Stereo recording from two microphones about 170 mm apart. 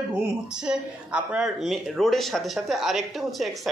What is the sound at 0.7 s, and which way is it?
Speech, 5° right (ahead or behind).